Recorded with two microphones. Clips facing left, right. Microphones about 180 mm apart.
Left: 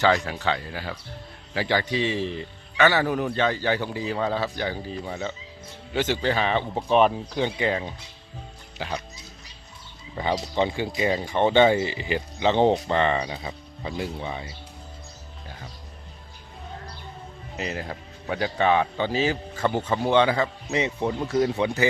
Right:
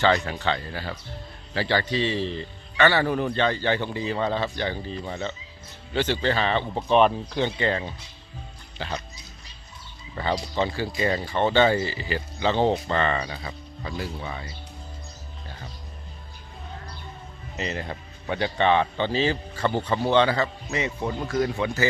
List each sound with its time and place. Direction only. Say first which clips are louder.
0.0 s speech: even; 5° left (ahead or behind)
10.2 s speech: left 1 dB; 15° left (ahead or behind)
15.4 s music: even; 5° left (ahead or behind)
17.6 s speech: even; 5° left (ahead or behind)